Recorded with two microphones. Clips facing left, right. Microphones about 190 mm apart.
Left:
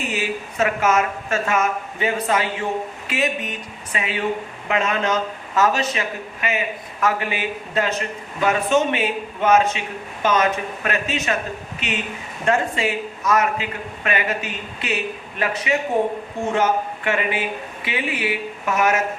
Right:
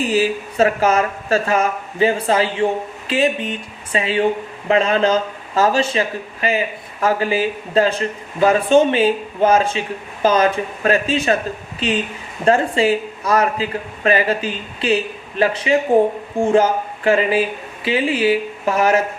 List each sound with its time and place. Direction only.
0.0 s speech: 35° right (ahead or behind)